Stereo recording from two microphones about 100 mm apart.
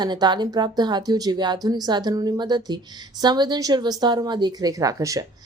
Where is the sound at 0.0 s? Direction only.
50° right (ahead or behind).